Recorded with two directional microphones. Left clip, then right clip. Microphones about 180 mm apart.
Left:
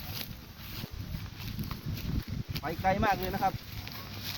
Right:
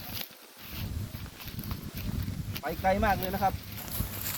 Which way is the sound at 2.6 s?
50° right (ahead or behind).